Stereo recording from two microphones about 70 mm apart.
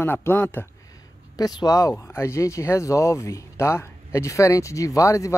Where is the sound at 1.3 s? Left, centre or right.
Left.